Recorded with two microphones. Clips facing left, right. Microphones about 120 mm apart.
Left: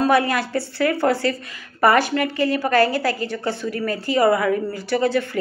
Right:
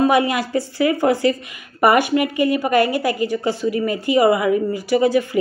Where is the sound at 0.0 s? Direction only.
15° right (ahead or behind).